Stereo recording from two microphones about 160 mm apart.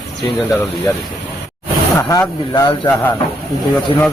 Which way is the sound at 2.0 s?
20° left (ahead or behind).